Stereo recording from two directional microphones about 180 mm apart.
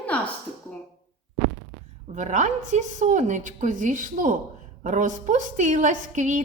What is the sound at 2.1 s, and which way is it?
A woman's voice, 40° right (ahead or behind).